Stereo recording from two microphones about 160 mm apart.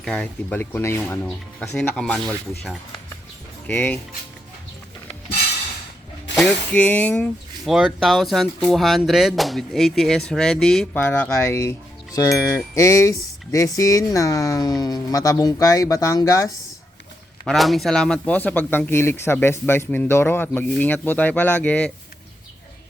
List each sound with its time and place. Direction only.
0.0 s speech: 5° left (ahead or behind)
3.7 s speech: 10° left (ahead or behind)
6.3 s speech: 5° left (ahead or behind)
11.0 s speech: 15° left (ahead or behind)
17.4 s speech: centre (ahead or behind)